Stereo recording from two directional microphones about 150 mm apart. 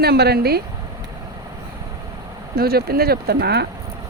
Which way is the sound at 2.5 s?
90° right.